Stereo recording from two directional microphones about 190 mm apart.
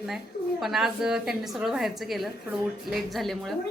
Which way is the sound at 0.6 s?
Centre (ahead or behind).